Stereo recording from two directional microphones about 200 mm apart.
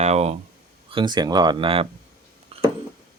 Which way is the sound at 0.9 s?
25° right (ahead or behind).